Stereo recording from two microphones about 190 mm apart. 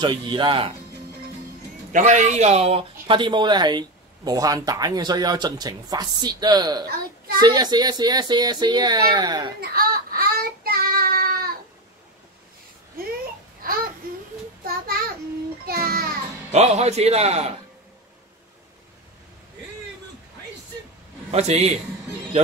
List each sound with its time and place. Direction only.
0.0 s speech: 25° right (ahead or behind)
1.9 s speech: 40° right (ahead or behind); by 9.5 s 20° right (ahead or behind)
9.6 s child singing: 50° right (ahead or behind)
13.6 s babbling: 50° right (ahead or behind)
14.7 s child singing: 50° right (ahead or behind)
15.6 s music: 50° right (ahead or behind)
16.5 s a man's voice: 35° right (ahead or behind)
21.3 s a man's voice: 35° right (ahead or behind)